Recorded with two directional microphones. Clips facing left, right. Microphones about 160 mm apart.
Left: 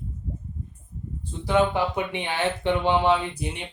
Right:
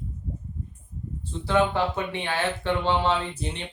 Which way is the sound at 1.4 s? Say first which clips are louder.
Left 1 dB; 15° left (ahead or behind).